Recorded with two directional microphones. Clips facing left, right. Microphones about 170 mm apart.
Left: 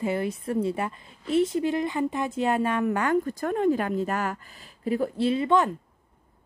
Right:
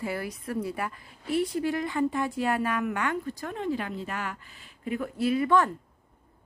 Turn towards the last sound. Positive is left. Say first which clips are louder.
# left 1 dB
turn(degrees=20)  # may be behind; listen again after turning